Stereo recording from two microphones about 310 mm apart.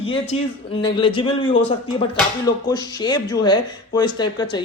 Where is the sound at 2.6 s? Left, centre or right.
Centre.